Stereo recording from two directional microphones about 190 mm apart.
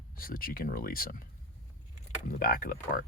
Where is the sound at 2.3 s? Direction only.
50° left (ahead or behind).